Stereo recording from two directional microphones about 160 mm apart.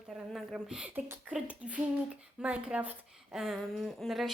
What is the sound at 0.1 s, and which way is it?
Speech, centre (ahead or behind).